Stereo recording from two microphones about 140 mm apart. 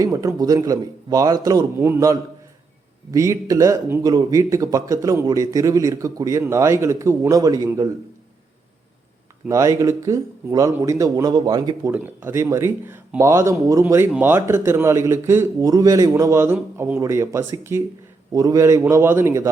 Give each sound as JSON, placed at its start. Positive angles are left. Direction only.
{"t": 0.0, "sound": "a man's voice", "side_deg": -25}
{"t": 9.5, "sound": "a man's voice", "side_deg": -25}
{"t": 11.9, "sound": "a man's voice", "side_deg": -15}